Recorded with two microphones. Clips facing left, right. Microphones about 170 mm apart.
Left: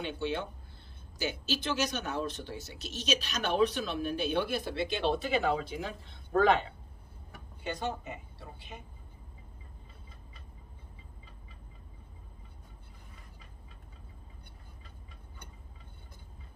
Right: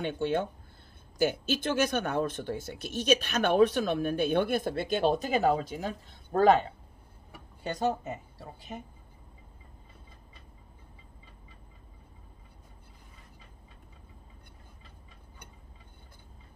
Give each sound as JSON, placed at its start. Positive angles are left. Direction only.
{"t": 0.0, "sound": "speech", "side_deg": -50}